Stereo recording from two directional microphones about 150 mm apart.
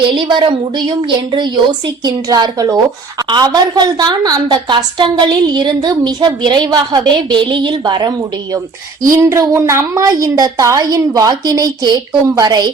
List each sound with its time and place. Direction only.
0.1 s a woman's voice: 35° right (ahead or behind)
9.0 s a woman's voice: 20° right (ahead or behind)